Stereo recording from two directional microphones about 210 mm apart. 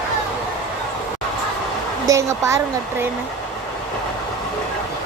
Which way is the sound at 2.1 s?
15° right (ahead or behind).